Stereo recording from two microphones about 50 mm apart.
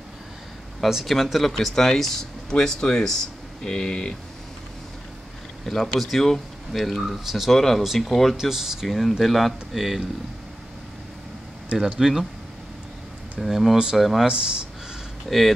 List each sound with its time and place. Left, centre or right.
0.8 s speech: centre
5.7 s speech: centre
7.8 s speech: centre
8.4 s speech: centre
11.8 s speech: centre
13.4 s speech: centre
14.2 s speech: centre
15.2 s speech: centre